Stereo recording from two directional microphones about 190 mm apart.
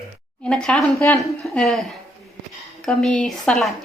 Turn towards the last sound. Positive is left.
turn(degrees=0)  # may be behind; listen again after turning